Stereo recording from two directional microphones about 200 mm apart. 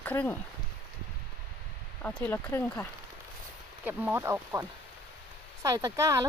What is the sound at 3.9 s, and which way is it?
Speech, 10° right (ahead or behind).